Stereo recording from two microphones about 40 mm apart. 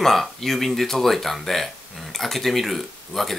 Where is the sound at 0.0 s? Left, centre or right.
Centre.